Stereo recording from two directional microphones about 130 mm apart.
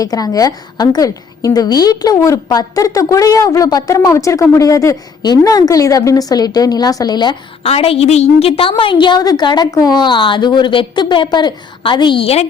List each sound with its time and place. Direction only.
0.0 s a woman's voice: 30° left (ahead or behind)
7.6 s a woman's voice: 50° left (ahead or behind)